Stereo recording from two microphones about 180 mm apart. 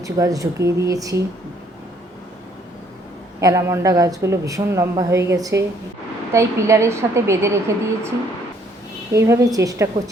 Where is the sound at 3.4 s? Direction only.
20° right (ahead or behind).